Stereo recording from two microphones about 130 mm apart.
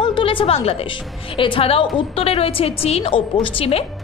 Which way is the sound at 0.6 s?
45° left (ahead or behind).